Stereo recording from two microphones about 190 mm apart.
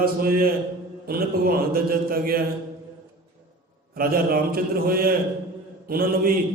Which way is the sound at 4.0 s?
50° right (ahead or behind).